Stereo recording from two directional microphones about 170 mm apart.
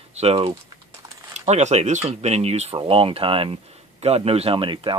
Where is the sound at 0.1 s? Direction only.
40° right (ahead or behind).